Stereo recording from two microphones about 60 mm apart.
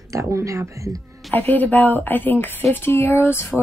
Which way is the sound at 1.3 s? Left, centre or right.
Left.